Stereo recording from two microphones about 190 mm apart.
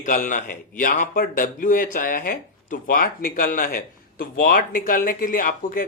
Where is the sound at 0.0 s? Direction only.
45° left (ahead or behind).